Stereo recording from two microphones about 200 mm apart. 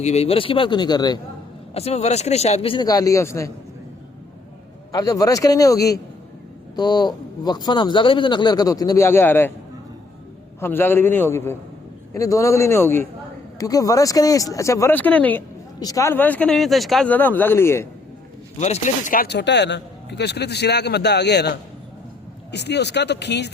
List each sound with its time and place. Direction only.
0.0 s a man's voice: 30° left (ahead or behind)
1.7 s a man's voice: 30° left (ahead or behind); by 3.5 s 15° left (ahead or behind)
4.9 s a man's voice: 20° left (ahead or behind)
10.6 s speech: 10° left (ahead or behind)
18.6 s speech: 35° left (ahead or behind); by 21.5 s 55° left (ahead or behind)
22.5 s speech: 55° left (ahead or behind)